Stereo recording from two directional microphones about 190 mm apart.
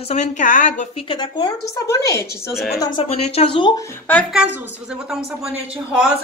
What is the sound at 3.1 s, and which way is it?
Speech, 30° left (ahead or behind).